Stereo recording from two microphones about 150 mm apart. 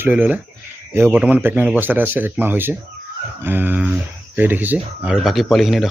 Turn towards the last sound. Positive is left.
turn(degrees=0)  # may be behind; listen again after turning